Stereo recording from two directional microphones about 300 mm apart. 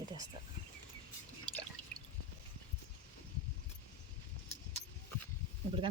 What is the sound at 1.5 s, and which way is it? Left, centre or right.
Drip, centre.